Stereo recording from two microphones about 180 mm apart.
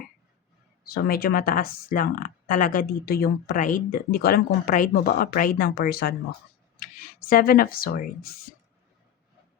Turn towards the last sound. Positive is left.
turn(degrees=55)  # may be behind; listen again after turning